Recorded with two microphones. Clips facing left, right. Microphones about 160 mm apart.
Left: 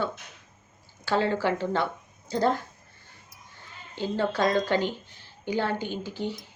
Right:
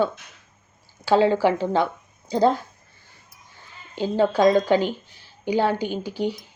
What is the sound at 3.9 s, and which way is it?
A woman's voice, 15° right (ahead or behind).